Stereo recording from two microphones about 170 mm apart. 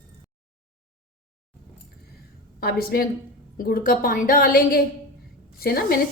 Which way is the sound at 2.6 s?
65° left (ahead or behind).